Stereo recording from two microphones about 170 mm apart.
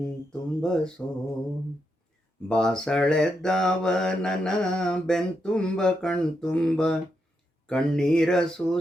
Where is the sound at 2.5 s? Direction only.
5° left (ahead or behind).